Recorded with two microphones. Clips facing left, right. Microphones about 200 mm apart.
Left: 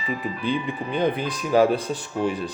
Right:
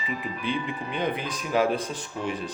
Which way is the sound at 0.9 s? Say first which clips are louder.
Left 6 dB; 35° left (ahead or behind).